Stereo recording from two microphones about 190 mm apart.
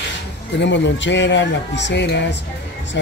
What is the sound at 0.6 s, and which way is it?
Speech, 70° left (ahead or behind).